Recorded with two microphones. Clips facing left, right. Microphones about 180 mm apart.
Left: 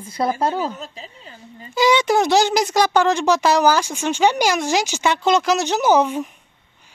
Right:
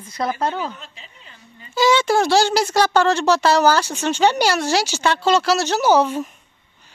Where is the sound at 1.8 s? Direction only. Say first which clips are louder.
Even; 20° left (ahead or behind).